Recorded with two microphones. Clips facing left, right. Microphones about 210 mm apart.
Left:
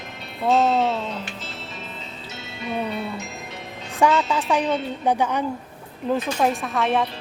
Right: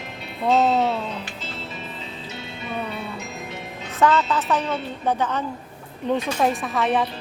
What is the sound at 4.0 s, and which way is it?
A woman's voice, 10° left (ahead or behind).